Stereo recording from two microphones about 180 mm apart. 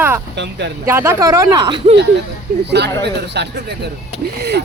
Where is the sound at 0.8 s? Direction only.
15° right (ahead or behind).